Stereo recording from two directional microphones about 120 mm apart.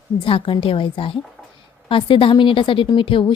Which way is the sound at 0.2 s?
50° left (ahead or behind).